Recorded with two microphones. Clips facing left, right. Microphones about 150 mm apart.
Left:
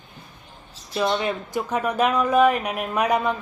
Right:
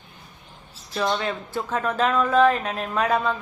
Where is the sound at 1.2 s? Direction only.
15° left (ahead or behind).